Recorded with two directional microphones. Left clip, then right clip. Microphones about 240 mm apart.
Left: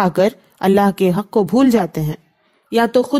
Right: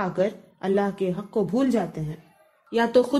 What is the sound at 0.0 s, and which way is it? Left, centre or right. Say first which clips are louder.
Speech: left 10 dB; left.